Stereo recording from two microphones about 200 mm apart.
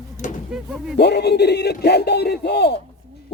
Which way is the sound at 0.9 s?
55° left (ahead or behind).